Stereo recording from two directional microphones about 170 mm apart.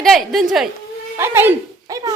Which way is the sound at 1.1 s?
15° right (ahead or behind).